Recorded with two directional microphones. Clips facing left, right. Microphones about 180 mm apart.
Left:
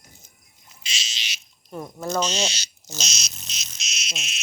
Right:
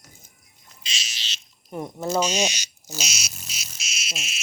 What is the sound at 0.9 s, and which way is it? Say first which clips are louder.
Insect: left 1 dB; 20° left (ahead or behind).